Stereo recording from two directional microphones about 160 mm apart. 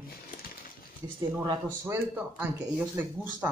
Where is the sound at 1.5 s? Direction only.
20° right (ahead or behind).